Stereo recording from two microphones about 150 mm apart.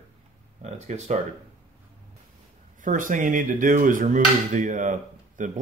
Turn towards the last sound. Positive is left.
turn(degrees=-55)  # may be behind; listen again after turning